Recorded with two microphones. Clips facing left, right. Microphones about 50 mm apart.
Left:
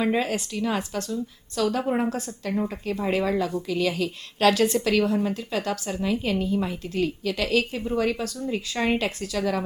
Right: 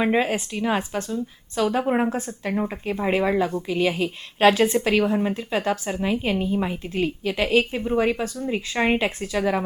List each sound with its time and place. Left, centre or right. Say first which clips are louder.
0.0 s a woman's voice: right 3 dB; right